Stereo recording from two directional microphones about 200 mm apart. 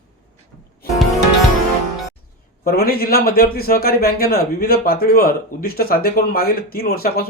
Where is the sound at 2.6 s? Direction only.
50° left (ahead or behind).